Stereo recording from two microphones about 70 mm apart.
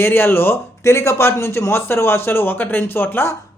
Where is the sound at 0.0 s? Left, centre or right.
Left.